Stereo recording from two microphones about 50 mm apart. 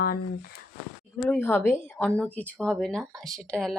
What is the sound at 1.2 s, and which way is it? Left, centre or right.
Speech, left.